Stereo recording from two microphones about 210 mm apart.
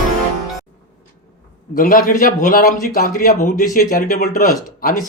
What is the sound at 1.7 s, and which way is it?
Speech, 40° left (ahead or behind).